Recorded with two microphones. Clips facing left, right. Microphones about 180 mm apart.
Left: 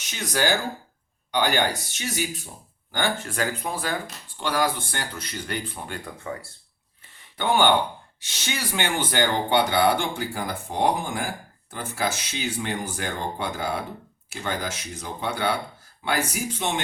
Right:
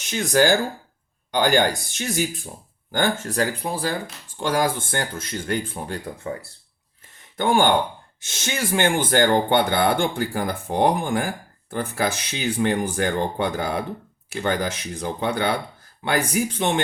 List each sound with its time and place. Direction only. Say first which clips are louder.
0.0 s speech: right 7 dB; 50° right (ahead or behind)
6.1 s speech: right 4 dB; 30° right (ahead or behind)
7.3 s speech: right 2 dB; 45° right (ahead or behind)